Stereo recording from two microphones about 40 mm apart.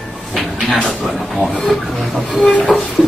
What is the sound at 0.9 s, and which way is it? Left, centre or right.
Speech, centre.